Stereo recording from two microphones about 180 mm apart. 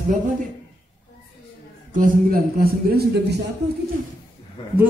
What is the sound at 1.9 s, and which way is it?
A man's voice, 50° right (ahead or behind).